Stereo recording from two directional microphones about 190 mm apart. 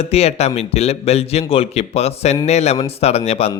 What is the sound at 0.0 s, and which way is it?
Speech, 35° left (ahead or behind).